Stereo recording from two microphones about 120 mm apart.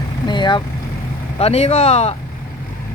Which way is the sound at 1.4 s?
60° left (ahead or behind).